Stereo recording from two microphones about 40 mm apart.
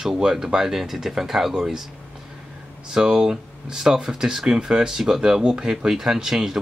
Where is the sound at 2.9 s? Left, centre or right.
Centre.